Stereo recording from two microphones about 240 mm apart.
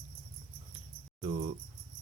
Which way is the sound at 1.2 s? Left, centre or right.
Right.